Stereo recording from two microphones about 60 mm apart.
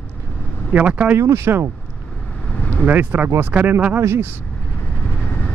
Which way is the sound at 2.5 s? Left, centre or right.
Left.